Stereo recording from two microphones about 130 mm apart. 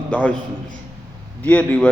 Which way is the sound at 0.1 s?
10° left (ahead or behind).